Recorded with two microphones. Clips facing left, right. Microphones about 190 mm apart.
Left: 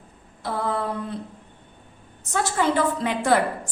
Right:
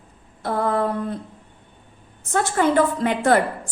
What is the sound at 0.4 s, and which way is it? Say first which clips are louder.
Speech: right 5 dB; 55° right (ahead or behind).